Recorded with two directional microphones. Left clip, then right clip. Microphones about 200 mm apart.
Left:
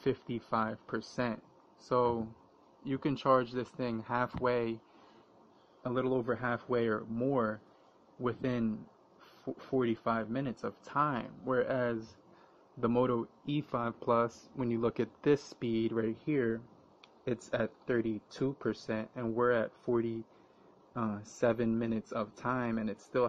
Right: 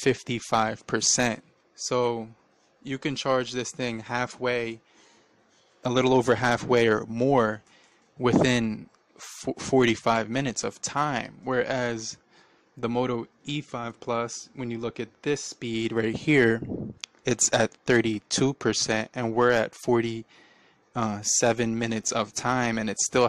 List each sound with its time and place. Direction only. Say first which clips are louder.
0.0 s speech: right 9 dB; 40° right (ahead or behind)
1.9 s speech: right 4 dB; 30° right (ahead or behind)
5.8 s speech: right 11 dB; 50° right (ahead or behind); by 15.4 s 20° right (ahead or behind)
15.6 s speech: right 6 dB; 30° right (ahead or behind); by 23.2 s 45° right (ahead or behind)